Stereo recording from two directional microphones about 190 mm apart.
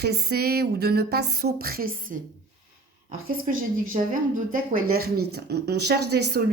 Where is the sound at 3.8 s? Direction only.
45° right (ahead or behind).